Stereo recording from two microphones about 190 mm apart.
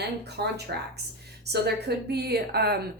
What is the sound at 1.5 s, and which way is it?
Speech, 60° right (ahead or behind).